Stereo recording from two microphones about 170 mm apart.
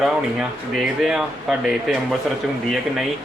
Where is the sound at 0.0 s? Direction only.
Centre (ahead or behind).